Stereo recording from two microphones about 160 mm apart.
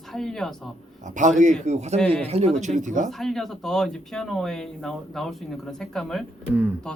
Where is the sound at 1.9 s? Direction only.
10° left (ahead or behind).